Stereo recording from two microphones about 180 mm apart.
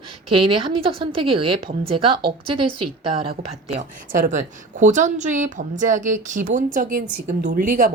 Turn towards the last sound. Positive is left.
turn(degrees=-50)  # may be behind; listen again after turning